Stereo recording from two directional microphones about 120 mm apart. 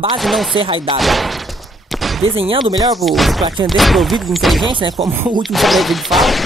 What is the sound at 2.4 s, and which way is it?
Speech, 50° right (ahead or behind).